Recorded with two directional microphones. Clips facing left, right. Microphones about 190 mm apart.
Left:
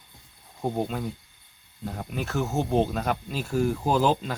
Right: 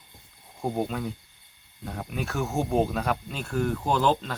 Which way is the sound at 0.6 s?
Centre (ahead or behind).